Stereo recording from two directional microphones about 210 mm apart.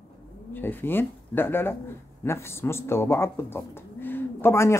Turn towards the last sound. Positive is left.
turn(degrees=15)  # may be behind; listen again after turning